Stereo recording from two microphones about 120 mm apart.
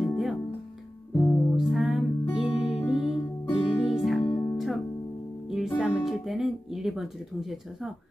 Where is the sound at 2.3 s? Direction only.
50° left (ahead or behind).